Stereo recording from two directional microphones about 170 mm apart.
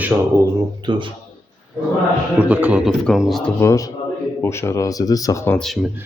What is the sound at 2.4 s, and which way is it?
Speech, 10° right (ahead or behind).